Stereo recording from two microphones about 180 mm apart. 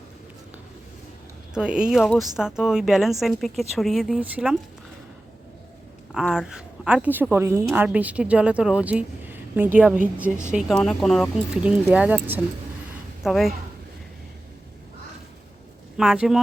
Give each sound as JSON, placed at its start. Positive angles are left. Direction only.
{"t": 1.5, "sound": "a woman's voice", "side_deg": -5}
{"t": 6.1, "sound": "a woman's voice", "side_deg": 0}
{"t": 16.0, "sound": "a woman's voice", "side_deg": -5}